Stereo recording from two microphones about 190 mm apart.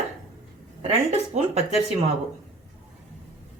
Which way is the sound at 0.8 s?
35° right (ahead or behind).